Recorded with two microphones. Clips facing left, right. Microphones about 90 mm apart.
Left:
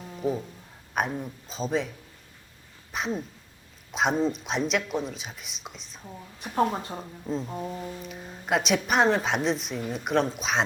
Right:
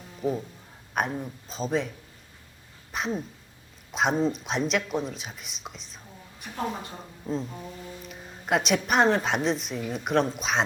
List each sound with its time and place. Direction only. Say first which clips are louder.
0.2 s speech: even; centre (ahead or behind)
2.9 s a sound: even; centre (ahead or behind)
3.9 s speech: even; centre (ahead or behind)
6.4 s speech: left 7 dB; 35° left (ahead or behind)
8.0 s speech: left 1 dB; centre (ahead or behind)